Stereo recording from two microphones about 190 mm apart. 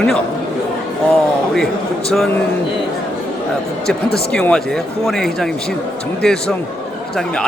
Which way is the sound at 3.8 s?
5° left (ahead or behind).